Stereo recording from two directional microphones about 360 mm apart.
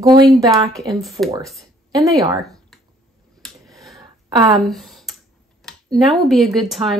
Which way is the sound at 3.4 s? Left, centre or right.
Centre.